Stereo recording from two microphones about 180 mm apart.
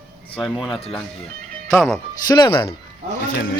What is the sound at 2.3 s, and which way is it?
Speech, 25° left (ahead or behind).